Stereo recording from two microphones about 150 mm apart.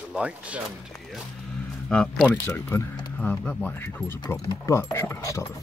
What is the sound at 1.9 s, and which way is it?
Speech, 5° left (ahead or behind).